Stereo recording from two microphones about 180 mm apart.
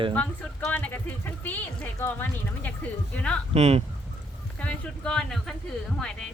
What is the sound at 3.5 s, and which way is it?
Speech, 35° right (ahead or behind).